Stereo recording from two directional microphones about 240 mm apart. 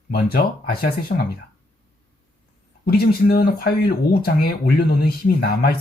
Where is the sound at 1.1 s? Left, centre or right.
Left.